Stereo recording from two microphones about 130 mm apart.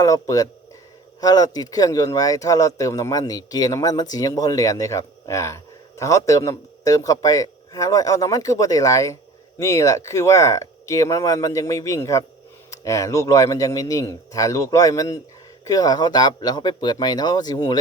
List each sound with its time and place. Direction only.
0.0 s speech: 25° left (ahead or behind)